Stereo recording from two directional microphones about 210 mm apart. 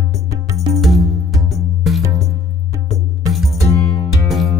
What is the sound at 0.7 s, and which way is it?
Music, centre (ahead or behind).